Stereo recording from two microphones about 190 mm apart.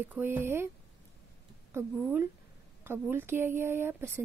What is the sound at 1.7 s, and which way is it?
A woman's voice, 10° right (ahead or behind).